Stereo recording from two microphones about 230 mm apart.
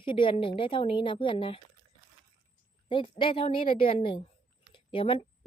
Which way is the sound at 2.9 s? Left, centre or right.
Left.